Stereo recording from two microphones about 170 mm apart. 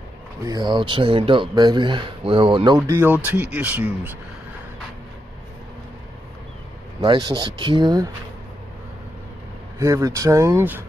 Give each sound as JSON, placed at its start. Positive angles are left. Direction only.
{"t": 0.5, "sound": "speech", "side_deg": -25}
{"t": 7.0, "sound": "speech", "side_deg": -25}
{"t": 9.8, "sound": "speech", "side_deg": -20}